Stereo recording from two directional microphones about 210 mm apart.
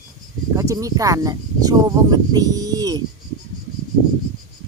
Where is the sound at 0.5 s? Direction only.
15° right (ahead or behind).